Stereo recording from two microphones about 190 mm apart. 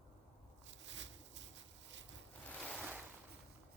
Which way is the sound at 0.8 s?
75° right (ahead or behind).